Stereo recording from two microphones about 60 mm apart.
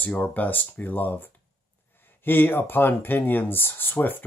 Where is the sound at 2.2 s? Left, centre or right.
Left.